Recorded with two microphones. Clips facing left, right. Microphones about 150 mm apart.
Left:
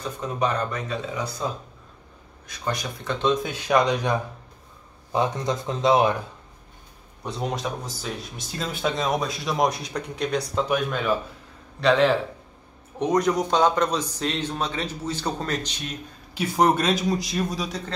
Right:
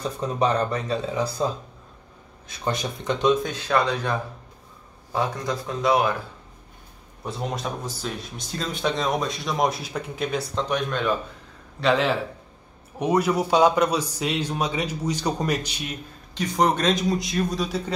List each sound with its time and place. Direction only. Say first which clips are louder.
0.2 s speech: right 3 dB; 30° right (ahead or behind)
2.4 s speech: right 2 dB; 25° right (ahead or behind)
3.3 s speech: left 2 dB; 10° left (ahead or behind)
7.2 s a man's voice: left 1 dB; centre (ahead or behind)
16.3 s speech: left 1 dB; 5° left (ahead or behind)